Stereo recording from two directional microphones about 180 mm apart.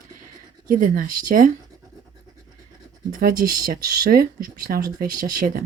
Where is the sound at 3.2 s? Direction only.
55° right (ahead or behind).